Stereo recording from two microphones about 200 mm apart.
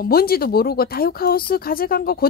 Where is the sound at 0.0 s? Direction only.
50° left (ahead or behind).